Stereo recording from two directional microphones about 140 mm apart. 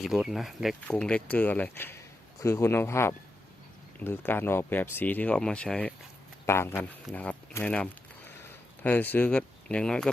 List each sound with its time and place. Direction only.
0.0 s speech: centre (ahead or behind)
6.4 s speech: 15° left (ahead or behind)